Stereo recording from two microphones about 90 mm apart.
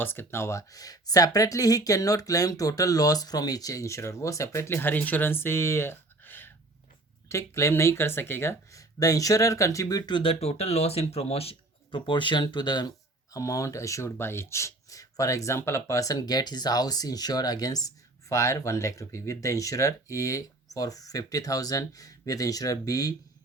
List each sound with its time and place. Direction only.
0.0 s speech: 25° left (ahead or behind)
9.0 s speech: 40° left (ahead or behind)
10.1 s speech: 65° left (ahead or behind)
11.1 s speech: 90° left; by 12.9 s 55° left (ahead or behind)
13.3 s speech: 40° left (ahead or behind)